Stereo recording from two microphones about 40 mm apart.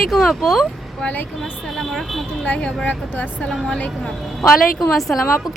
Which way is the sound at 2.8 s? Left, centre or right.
Left.